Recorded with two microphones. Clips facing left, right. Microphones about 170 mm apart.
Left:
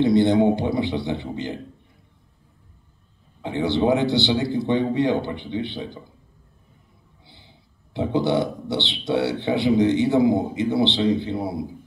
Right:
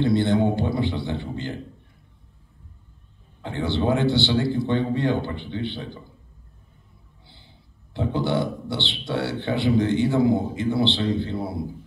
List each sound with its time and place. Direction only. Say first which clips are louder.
0.0 s a man's voice: left 3 dB; 20° left (ahead or behind)
3.4 s a man's voice: left 3 dB; 20° left (ahead or behind)
7.9 s a man's voice: left 3 dB; 20° left (ahead or behind)